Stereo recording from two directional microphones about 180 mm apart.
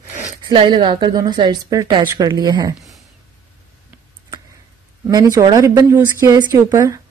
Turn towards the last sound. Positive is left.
turn(degrees=-20)  # may be behind; listen again after turning